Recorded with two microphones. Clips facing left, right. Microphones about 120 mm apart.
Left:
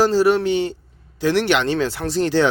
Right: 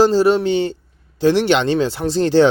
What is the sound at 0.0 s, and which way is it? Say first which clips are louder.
Speech: right 2 dB; 25° right (ahead or behind).